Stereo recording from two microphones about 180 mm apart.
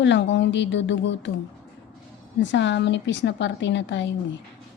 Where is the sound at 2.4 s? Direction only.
85° left.